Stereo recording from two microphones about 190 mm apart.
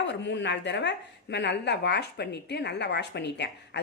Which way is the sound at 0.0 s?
70° left (ahead or behind).